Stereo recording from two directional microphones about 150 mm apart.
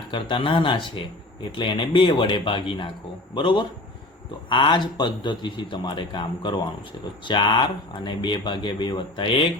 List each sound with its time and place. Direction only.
0.1 s a man's voice: 35° left (ahead or behind)